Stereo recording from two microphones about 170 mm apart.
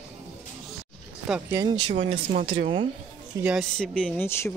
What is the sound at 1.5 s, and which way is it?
Speech, 20° right (ahead or behind).